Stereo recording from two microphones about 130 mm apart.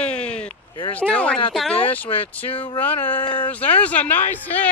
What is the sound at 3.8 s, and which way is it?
Speech, 10° left (ahead or behind).